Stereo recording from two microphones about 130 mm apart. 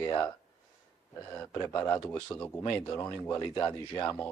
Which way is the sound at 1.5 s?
25° left (ahead or behind).